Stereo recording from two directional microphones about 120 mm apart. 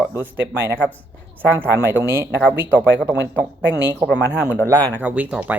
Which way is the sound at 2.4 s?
10° right (ahead or behind).